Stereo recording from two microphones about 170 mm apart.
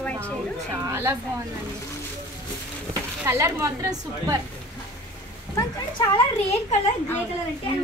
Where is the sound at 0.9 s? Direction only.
15° right (ahead or behind).